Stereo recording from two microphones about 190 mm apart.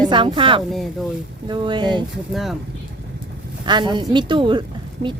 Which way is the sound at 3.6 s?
25° right (ahead or behind).